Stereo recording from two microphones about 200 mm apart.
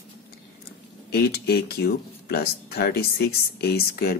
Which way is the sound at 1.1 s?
55° left (ahead or behind).